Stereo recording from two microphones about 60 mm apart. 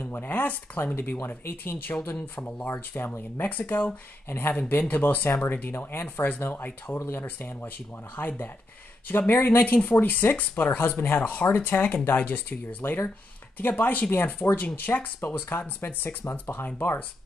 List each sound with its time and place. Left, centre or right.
0.0 s speech: left
2.0 s speech: left
12.8 s speech: left